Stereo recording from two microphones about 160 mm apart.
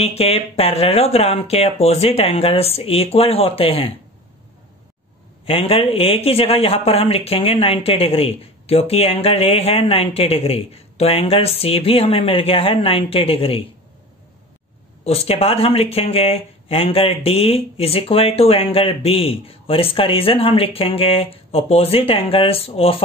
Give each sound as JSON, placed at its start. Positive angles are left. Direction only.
{"t": 0.0, "sound": "a man's voice", "side_deg": 40}
{"t": 5.4, "sound": "a man's voice", "side_deg": 35}
{"t": 15.0, "sound": "a man's voice", "side_deg": 40}